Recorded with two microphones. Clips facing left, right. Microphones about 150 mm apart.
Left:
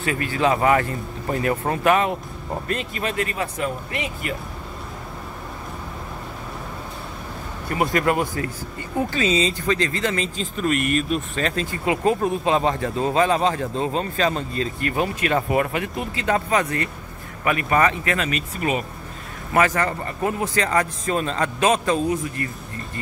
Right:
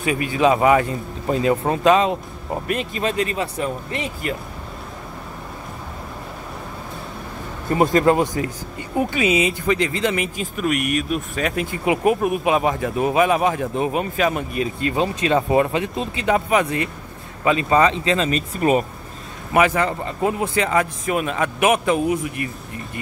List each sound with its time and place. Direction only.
0.0 s speech: 15° right (ahead or behind); by 4.3 s 35° right (ahead or behind)
7.7 s speech: 25° right (ahead or behind); by 11.6 s 10° right (ahead or behind)
11.7 s speech: 20° right (ahead or behind); by 18.9 s 40° right (ahead or behind)
19.5 s speech: 15° right (ahead or behind)